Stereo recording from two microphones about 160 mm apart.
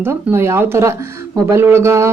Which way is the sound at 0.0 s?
15° right (ahead or behind).